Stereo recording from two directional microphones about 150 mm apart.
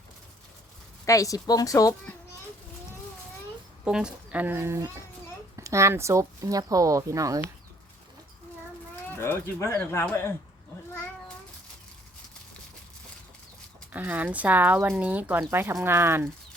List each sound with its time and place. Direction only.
1.0 s a woman's voice: 20° left (ahead or behind)
3.8 s speech: 5° right (ahead or behind); by 7.4 s 20° right (ahead or behind)
9.1 s speech: 15° left (ahead or behind)
13.9 s speech: 10° right (ahead or behind)